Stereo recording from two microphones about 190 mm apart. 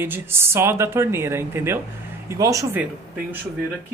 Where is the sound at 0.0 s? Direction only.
10° right (ahead or behind).